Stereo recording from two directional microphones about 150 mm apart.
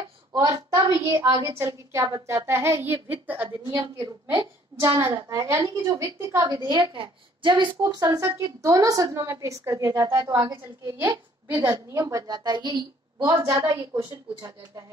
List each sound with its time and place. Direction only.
0.3 s a woman's voice: 20° right (ahead or behind)
3.4 s a woman's voice: 30° right (ahead or behind)
4.8 s a woman's voice: 15° right (ahead or behind); by 7.7 s 30° right (ahead or behind)
7.8 s a woman's voice: 20° right (ahead or behind)